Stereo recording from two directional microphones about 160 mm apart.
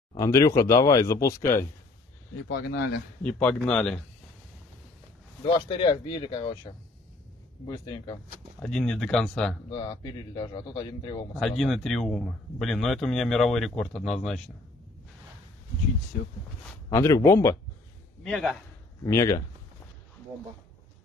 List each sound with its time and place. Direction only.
0.2 s a man's voice: 20° left (ahead or behind)
2.5 s speech: 90° left
3.3 s speech: 10° left (ahead or behind)
5.5 s a man's voice: 30° left (ahead or behind)
8.5 s speech: 5° left (ahead or behind)
9.7 s a man's voice: 30° left (ahead or behind)
11.3 s speech: 5° left (ahead or behind)
16.9 s a man's voice: 20° left (ahead or behind)
18.2 s speech: 5° left (ahead or behind)
19.0 s a man's voice: 20° left (ahead or behind)